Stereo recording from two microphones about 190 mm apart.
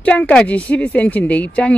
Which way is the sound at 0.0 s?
5° left (ahead or behind).